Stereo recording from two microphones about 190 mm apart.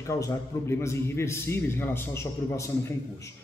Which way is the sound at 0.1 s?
15° left (ahead or behind).